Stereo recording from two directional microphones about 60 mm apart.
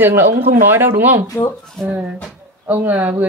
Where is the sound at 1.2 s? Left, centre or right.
Left.